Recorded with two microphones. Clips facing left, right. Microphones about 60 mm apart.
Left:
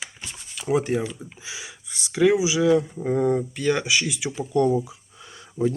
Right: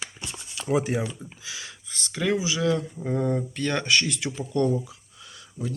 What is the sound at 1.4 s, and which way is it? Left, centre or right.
Speech, centre.